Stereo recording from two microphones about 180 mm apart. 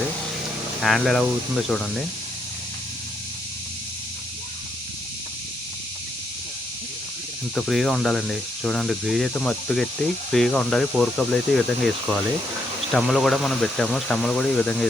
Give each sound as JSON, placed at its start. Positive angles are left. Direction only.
{"t": 0.8, "sound": "speech", "side_deg": 0}
{"t": 7.5, "sound": "speech", "side_deg": 0}
{"t": 12.9, "sound": "speech", "side_deg": 0}